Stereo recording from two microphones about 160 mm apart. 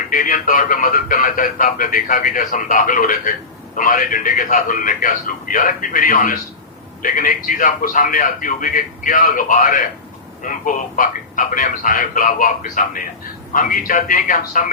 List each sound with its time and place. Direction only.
0.1 s speech: 60° left (ahead or behind)